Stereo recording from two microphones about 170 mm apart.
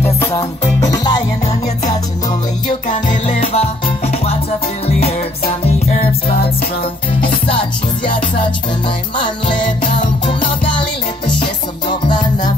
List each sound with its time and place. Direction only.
0.7 s music: 20° left (ahead or behind)
2.9 s music: 45° left (ahead or behind)
9.2 s music: 30° left (ahead or behind)